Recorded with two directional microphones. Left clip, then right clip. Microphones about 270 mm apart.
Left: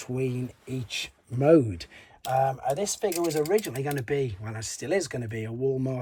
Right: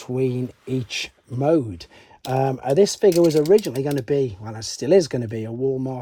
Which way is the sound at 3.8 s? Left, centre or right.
Centre.